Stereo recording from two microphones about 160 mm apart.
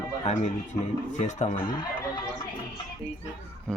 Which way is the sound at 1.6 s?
25° left (ahead or behind).